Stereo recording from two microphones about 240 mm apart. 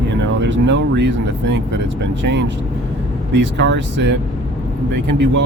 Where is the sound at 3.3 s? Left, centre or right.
Right.